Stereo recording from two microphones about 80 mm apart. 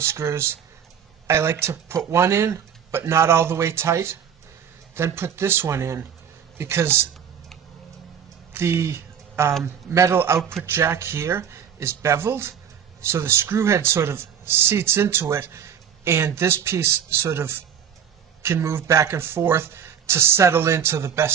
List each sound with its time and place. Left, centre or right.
0.0 s speech: right
8.5 s speech: right